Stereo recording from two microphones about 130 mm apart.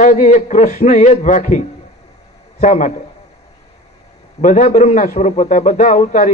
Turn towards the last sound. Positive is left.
turn(degrees=75)  # may be behind; listen again after turning